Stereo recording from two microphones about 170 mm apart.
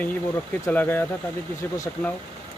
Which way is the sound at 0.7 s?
10° left (ahead or behind).